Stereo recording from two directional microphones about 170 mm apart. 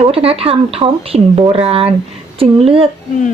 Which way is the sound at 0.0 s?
35° right (ahead or behind).